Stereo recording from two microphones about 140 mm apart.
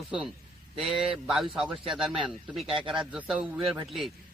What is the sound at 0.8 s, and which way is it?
A man's voice, centre (ahead or behind).